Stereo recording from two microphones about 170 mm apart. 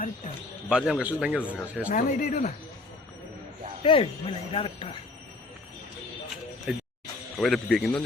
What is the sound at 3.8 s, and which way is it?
Speech, 35° left (ahead or behind).